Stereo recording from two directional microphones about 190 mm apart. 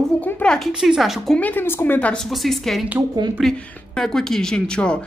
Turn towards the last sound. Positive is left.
turn(degrees=5)  # may be behind; listen again after turning